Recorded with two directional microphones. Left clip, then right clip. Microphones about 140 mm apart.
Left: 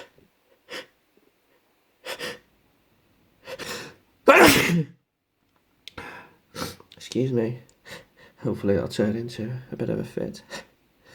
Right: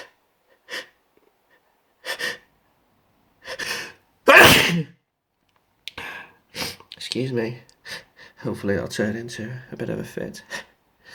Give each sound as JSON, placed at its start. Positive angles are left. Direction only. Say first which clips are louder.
{"t": 2.0, "sound": "gasp", "louder": "right 6 dB", "side_deg": 55}
{"t": 3.4, "sound": "gasp", "louder": "right 6 dB", "side_deg": 45}
{"t": 4.3, "sound": "sneeze", "louder": "right 4 dB", "side_deg": 60}
{"t": 5.8, "sound": "gasp", "louder": "right 5 dB", "side_deg": 45}
{"t": 7.9, "sound": "speech", "louder": "right 7 dB", "side_deg": 40}
{"t": 9.6, "sound": "speech", "louder": "left 1 dB", "side_deg": 10}
{"t": 10.4, "sound": "a sound", "louder": "right 5 dB", "side_deg": 40}